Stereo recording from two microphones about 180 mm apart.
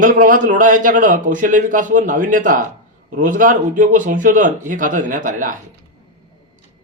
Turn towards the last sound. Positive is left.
turn(degrees=-45)  # may be behind; listen again after turning